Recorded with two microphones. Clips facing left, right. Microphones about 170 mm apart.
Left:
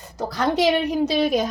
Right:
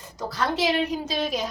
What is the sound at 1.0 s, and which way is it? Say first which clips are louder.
Speech: left 7 dB; 60° left (ahead or behind).